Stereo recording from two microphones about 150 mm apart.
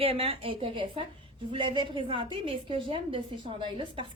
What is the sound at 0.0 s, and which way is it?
A woman's voice, 40° right (ahead or behind).